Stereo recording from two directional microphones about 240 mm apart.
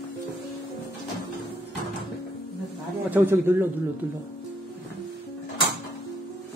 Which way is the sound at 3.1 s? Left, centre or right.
Centre.